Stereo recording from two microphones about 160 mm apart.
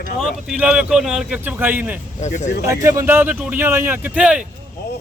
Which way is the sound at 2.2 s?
45° left (ahead or behind).